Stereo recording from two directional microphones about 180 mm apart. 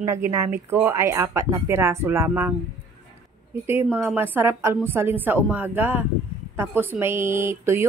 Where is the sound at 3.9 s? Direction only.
10° right (ahead or behind).